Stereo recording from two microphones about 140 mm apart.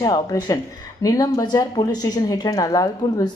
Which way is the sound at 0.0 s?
30° left (ahead or behind).